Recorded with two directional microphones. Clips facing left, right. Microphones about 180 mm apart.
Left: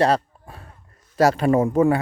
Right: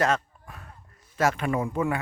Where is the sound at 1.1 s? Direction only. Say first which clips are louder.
Left 8 dB; 35° left (ahead or behind).